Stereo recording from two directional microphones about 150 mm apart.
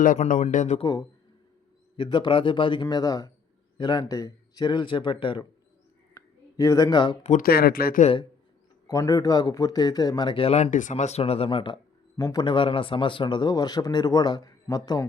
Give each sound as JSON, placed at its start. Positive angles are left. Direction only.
{"t": 0.0, "sound": "a man's voice", "side_deg": 60}
{"t": 0.8, "sound": "a man's voice", "side_deg": 30}
{"t": 6.1, "sound": "a sound", "side_deg": 20}
{"t": 7.2, "sound": "speech", "side_deg": 55}
{"t": 7.4, "sound": "speech", "side_deg": 90}
{"t": 8.9, "sound": "a man's voice", "side_deg": 25}